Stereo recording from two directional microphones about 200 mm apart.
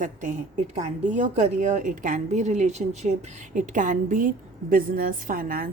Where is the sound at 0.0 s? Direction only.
40° right (ahead or behind).